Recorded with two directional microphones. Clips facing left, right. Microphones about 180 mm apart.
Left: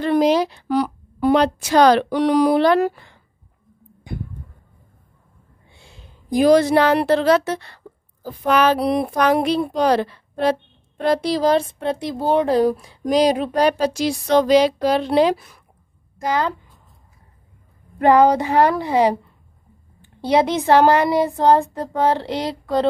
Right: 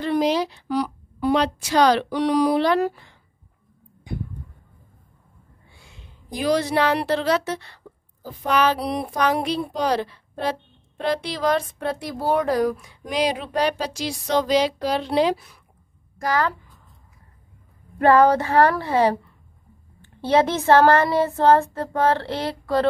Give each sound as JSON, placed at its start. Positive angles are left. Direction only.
{"t": 0.0, "sound": "a woman's voice", "side_deg": 55}
{"t": 5.7, "sound": "a sound", "side_deg": 30}
{"t": 6.3, "sound": "a woman's voice", "side_deg": 50}
{"t": 11.0, "sound": "speech", "side_deg": 45}
{"t": 16.2, "sound": "a woman's voice", "side_deg": 20}
{"t": 18.0, "sound": "speech", "side_deg": 15}